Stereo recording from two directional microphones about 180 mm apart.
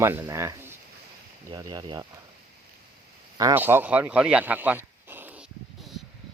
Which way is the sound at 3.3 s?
15° right (ahead or behind).